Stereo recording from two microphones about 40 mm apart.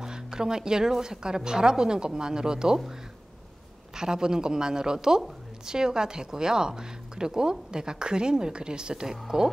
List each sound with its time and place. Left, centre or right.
0.0 s a woman's voice: centre
3.9 s a woman's voice: centre